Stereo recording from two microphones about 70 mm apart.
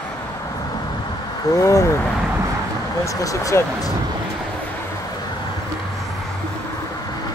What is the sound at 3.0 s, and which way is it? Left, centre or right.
Speech, left.